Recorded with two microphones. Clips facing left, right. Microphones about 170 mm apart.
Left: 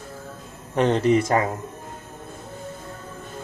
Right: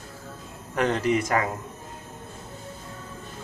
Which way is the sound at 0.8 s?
30° left (ahead or behind).